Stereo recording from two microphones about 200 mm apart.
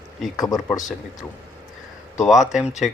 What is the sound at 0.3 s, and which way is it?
Speech, 20° left (ahead or behind).